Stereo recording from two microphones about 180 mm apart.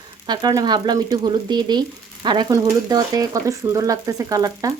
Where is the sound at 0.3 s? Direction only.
20° right (ahead or behind).